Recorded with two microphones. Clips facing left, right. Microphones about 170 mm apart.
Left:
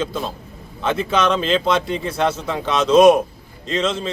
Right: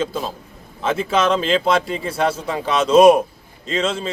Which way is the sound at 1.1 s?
30° right (ahead or behind).